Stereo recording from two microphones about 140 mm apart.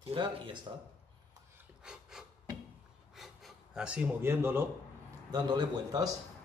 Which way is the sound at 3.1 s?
Centre (ahead or behind).